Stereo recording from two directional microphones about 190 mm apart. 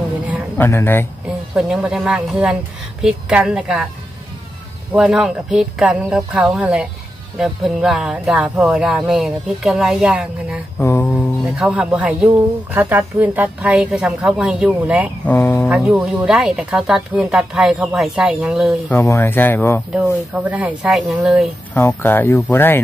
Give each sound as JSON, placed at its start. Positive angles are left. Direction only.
{"t": 0.6, "sound": "speech", "side_deg": 10}
{"t": 1.5, "sound": "speech", "side_deg": 0}
{"t": 4.9, "sound": "speech", "side_deg": 0}
{"t": 10.8, "sound": "speech", "side_deg": 10}
{"t": 11.5, "sound": "a woman's voice", "side_deg": -5}
{"t": 15.2, "sound": "speech", "side_deg": 10}
{"t": 15.7, "sound": "speech", "side_deg": -5}
{"t": 18.9, "sound": "speech", "side_deg": 15}
{"t": 20.3, "sound": "speech", "side_deg": -10}
{"t": 21.7, "sound": "speech", "side_deg": 10}